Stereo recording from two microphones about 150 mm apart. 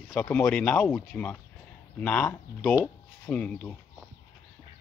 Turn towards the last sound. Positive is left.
turn(degrees=10)  # may be behind; listen again after turning